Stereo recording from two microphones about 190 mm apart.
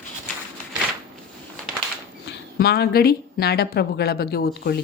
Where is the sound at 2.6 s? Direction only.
55° left (ahead or behind).